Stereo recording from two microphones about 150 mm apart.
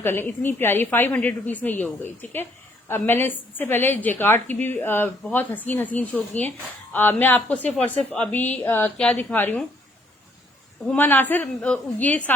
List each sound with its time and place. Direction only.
0.0 s a woman's voice: 15° left (ahead or behind)
10.9 s a woman's voice: 15° left (ahead or behind)